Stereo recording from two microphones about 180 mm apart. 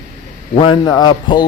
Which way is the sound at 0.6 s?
25° left (ahead or behind).